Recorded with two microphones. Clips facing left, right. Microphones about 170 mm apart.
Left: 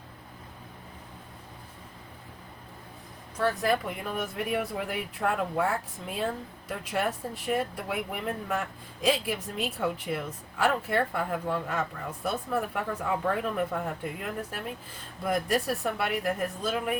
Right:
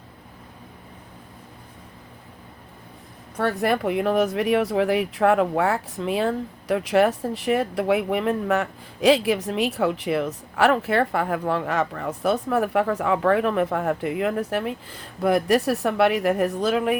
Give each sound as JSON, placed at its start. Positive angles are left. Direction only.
{"t": 3.3, "sound": "speech", "side_deg": -65}